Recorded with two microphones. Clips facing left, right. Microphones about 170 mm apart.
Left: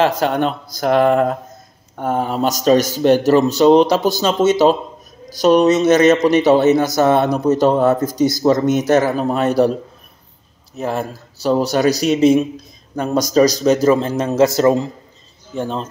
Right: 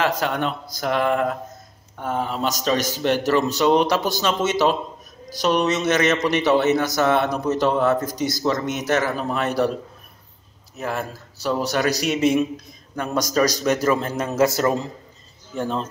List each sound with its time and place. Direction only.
0.0 s a man's voice: 30° left (ahead or behind)
10.8 s a man's voice: 30° left (ahead or behind)